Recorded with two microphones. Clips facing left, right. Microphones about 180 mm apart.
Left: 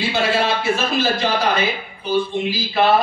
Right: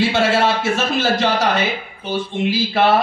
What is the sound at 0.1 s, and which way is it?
A man's voice, 75° right (ahead or behind).